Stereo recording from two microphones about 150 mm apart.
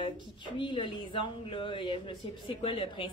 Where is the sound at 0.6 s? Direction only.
35° left (ahead or behind).